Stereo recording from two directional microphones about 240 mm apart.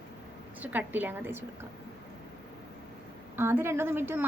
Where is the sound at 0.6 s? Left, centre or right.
Centre.